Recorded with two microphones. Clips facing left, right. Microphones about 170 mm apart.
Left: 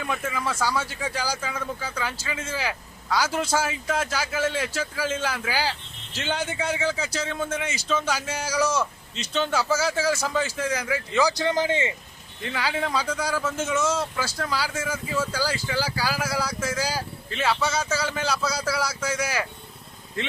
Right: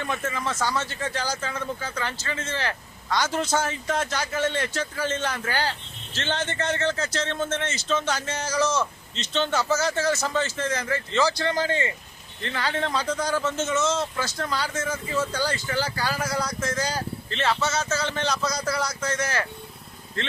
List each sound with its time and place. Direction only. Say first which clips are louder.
0.0 s speech: even; 10° left (ahead or behind)